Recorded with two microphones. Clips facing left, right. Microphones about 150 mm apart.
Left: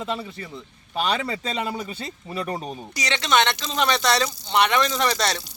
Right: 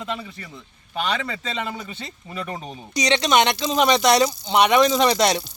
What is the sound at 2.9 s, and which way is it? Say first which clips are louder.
Speech: right 4 dB; 20° right (ahead or behind).